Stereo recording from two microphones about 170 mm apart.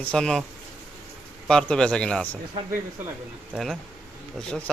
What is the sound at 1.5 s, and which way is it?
Speech, 5° left (ahead or behind).